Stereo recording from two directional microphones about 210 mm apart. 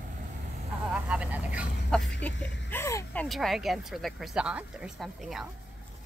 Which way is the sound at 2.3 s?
60° left (ahead or behind).